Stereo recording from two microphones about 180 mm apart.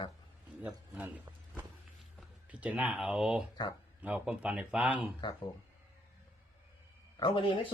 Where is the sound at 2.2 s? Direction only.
5° right (ahead or behind).